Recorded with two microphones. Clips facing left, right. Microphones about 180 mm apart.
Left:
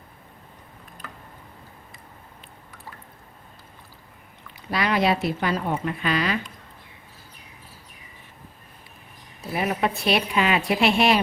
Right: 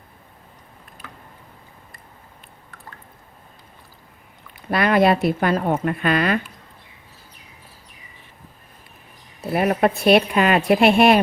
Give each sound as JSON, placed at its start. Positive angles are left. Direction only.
{"t": 4.7, "sound": "a woman's voice", "side_deg": -55}
{"t": 9.5, "sound": "a woman's voice", "side_deg": -55}